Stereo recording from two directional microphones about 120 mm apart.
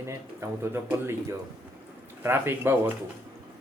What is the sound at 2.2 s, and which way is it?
Speech, 20° right (ahead or behind).